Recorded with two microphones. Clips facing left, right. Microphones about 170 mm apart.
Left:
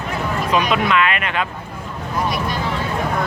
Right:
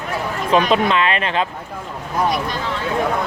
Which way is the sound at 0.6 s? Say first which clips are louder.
Right 1 dB; 30° right (ahead or behind).